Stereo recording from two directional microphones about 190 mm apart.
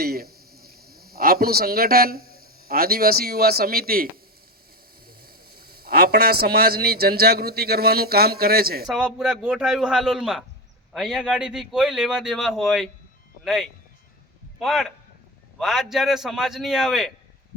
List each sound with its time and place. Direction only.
0.0 s a sound: 55° right (ahead or behind)
2.6 s speech: 55° right (ahead or behind)
8.9 s a man's voice: 5° right (ahead or behind)